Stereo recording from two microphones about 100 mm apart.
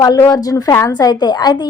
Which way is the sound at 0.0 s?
35° left (ahead or behind).